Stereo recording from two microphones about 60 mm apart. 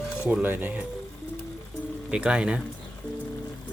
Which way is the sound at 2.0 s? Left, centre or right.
Centre.